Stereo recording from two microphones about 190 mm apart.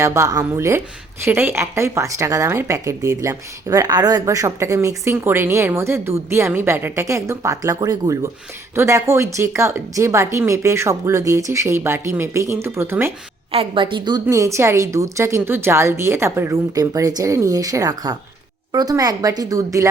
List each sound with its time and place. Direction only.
0.0 s speech: 15° right (ahead or behind)
13.5 s a woman's voice: 30° right (ahead or behind)